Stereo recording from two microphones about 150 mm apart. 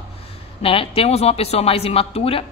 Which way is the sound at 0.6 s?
40° left (ahead or behind).